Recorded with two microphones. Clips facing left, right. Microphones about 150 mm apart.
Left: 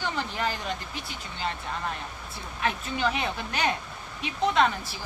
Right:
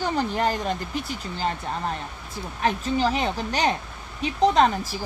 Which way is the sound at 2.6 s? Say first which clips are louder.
Right 5 dB; 35° right (ahead or behind).